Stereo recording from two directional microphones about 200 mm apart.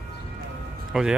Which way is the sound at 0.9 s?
Centre (ahead or behind).